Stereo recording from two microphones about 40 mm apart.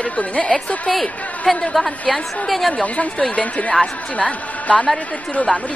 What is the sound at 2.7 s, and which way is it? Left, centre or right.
A man's voice, left.